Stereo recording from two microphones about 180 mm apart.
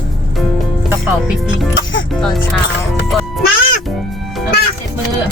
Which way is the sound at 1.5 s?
90° left.